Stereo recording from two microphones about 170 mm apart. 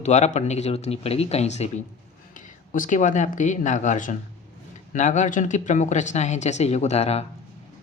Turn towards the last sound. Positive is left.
turn(degrees=40)  # may be behind; listen again after turning